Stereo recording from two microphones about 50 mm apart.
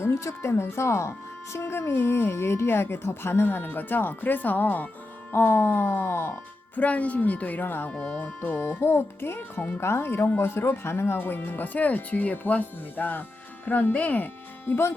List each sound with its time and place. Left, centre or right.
0.0 s speech: left
6.7 s speech: left
7.9 s speech: left
8.2 s speech: left
9.8 s speech: left